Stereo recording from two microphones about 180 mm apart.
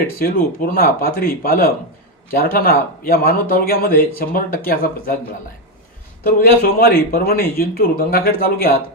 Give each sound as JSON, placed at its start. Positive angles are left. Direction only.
{"t": 0.2, "sound": "speech", "side_deg": 55}
{"t": 6.2, "sound": "speech", "side_deg": 55}